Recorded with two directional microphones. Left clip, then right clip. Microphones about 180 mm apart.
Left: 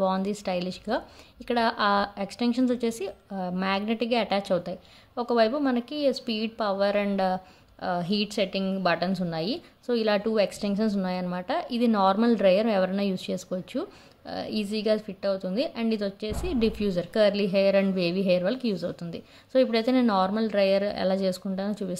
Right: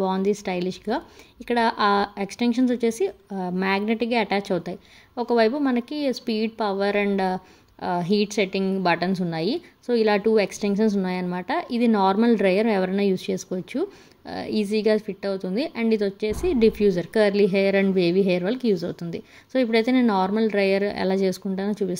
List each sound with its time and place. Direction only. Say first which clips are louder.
0.0 s a woman's voice: right 3 dB; 15° right (ahead or behind)